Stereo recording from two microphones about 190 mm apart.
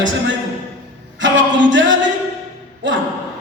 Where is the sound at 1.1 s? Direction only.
75° right (ahead or behind).